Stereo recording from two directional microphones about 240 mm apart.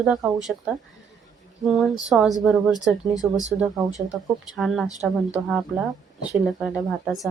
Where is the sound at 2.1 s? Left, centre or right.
Centre.